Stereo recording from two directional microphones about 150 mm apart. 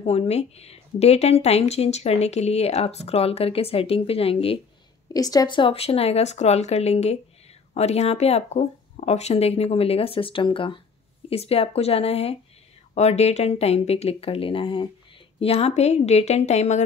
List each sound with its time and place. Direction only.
0.0 s a woman's voice: 45° left (ahead or behind)
5.1 s a woman's voice: 25° left (ahead or behind); by 16.8 s 50° left (ahead or behind)